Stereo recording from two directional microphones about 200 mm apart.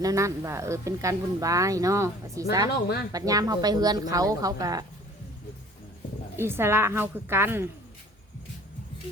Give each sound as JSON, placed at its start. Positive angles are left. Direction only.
{"t": 0.0, "sound": "speech", "side_deg": -15}
{"t": 2.6, "sound": "speech", "side_deg": 55}
{"t": 3.1, "sound": "speech", "side_deg": -15}
{"t": 6.3, "sound": "speech", "side_deg": -10}